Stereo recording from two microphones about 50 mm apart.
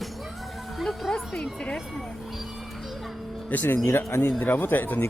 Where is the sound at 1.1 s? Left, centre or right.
Left.